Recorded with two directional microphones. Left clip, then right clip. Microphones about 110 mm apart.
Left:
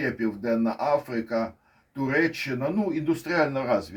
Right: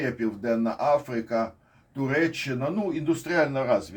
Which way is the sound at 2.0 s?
25° left (ahead or behind).